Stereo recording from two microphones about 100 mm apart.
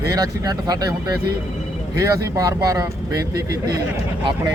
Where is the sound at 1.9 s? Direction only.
35° right (ahead or behind).